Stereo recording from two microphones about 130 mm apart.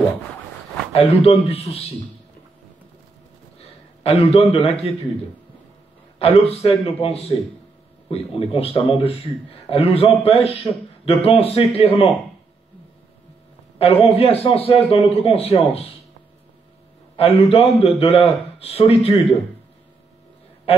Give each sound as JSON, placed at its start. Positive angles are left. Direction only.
{"t": 0.9, "sound": "a man's voice", "side_deg": 50}
{"t": 3.5, "sound": "a sound", "side_deg": 50}
{"t": 6.1, "sound": "a man's voice", "side_deg": 50}
{"t": 14.0, "sound": "a man's voice", "side_deg": 50}
{"t": 17.2, "sound": "a man's voice", "side_deg": 45}